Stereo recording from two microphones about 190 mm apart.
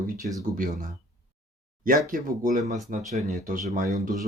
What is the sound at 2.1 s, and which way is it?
Speech, 45° right (ahead or behind).